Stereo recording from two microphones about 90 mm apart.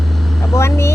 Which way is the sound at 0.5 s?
30° left (ahead or behind).